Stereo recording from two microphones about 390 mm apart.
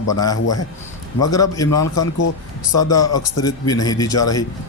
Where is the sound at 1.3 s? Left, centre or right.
Centre.